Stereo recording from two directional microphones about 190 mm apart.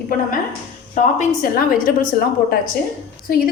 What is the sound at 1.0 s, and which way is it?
Speech, 40° left (ahead or behind).